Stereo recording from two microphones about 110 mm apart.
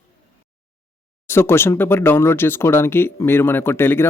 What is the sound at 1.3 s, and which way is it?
Speech, 20° left (ahead or behind).